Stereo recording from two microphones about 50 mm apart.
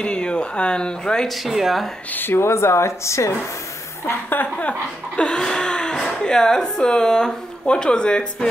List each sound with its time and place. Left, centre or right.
0.0 s speech: centre
1.2 s speech: centre
2.1 s a woman's voice: left
2.4 s speech: left
4.0 s a woman's voice: left
4.6 s speech: left
5.2 s speech: centre